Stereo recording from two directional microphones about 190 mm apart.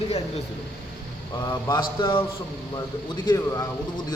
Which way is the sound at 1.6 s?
20° left (ahead or behind).